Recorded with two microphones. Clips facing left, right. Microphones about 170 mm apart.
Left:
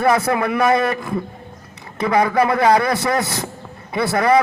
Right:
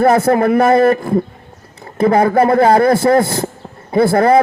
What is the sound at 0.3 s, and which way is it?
A man's voice, 50° right (ahead or behind).